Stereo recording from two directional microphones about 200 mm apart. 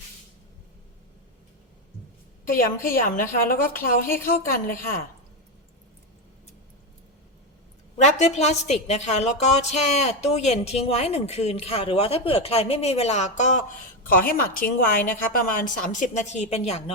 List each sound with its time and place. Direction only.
2.5 s a woman's voice: 45° left (ahead or behind)
4.0 s a woman's voice: 10° left (ahead or behind)
4.3 s a woman's voice: 45° left (ahead or behind)
7.9 s a woman's voice: 35° left (ahead or behind)
14.1 s a woman's voice: 45° left (ahead or behind); by 16.9 s 30° left (ahead or behind)